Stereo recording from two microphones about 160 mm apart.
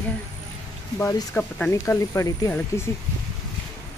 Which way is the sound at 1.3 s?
10° left (ahead or behind).